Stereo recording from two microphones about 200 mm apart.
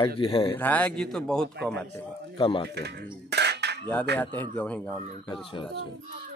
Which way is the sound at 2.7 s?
55° right (ahead or behind).